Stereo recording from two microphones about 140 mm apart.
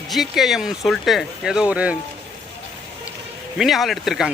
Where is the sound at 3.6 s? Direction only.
Centre (ahead or behind).